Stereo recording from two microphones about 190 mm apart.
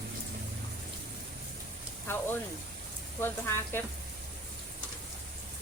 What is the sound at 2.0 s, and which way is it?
Speech, 10° left (ahead or behind).